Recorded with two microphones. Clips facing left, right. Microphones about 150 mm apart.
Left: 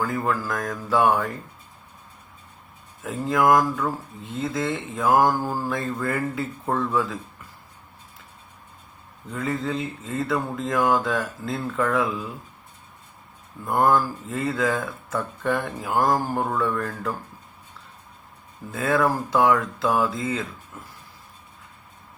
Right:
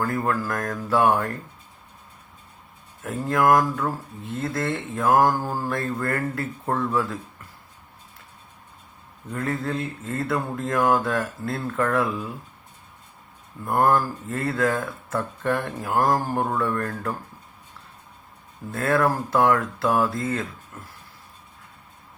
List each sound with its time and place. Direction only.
0.0 s speech: centre (ahead or behind)
3.0 s speech: centre (ahead or behind)
9.3 s speech: centre (ahead or behind)
13.7 s speech: centre (ahead or behind)
18.7 s speech: centre (ahead or behind)